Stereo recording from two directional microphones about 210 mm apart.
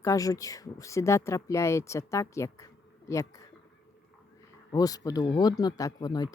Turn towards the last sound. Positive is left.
turn(degrees=20)  # may be behind; listen again after turning